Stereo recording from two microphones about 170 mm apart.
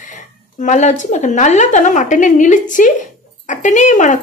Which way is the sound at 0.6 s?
45° left (ahead or behind).